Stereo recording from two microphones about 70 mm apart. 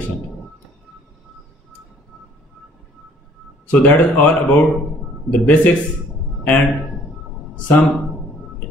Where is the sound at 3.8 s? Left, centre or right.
Left.